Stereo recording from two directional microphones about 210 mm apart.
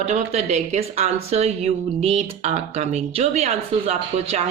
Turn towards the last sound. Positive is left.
turn(degrees=-30)  # may be behind; listen again after turning